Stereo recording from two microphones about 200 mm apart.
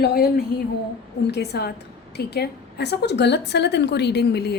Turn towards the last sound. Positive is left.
turn(degrees=55)  # may be behind; listen again after turning